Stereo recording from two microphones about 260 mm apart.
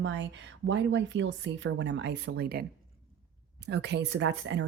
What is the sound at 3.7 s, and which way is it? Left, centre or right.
Speech, right.